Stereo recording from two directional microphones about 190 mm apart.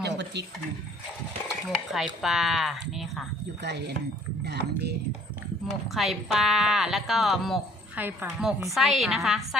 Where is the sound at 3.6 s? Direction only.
65° right (ahead or behind).